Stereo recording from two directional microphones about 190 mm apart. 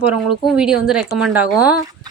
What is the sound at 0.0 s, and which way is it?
A woman's voice, 5° right (ahead or behind).